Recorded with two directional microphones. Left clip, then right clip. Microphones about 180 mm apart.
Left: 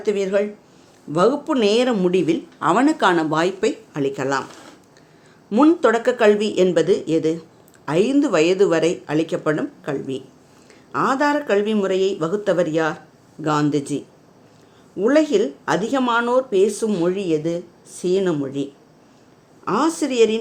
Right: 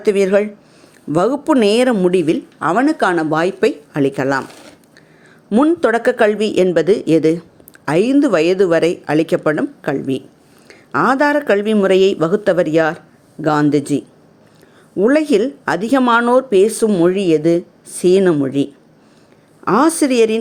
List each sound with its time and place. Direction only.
0.0 s speech: 35° right (ahead or behind)
2.0 s a woman's voice: 25° right (ahead or behind)
5.5 s a woman's voice: 20° right (ahead or behind)
15.0 s speech: 35° right (ahead or behind)